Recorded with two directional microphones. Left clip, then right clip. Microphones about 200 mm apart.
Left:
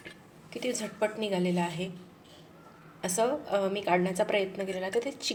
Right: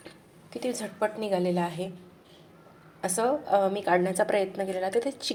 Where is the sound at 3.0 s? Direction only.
15° right (ahead or behind).